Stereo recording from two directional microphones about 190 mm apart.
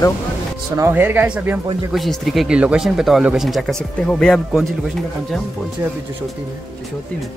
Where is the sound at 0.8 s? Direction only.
10° right (ahead or behind).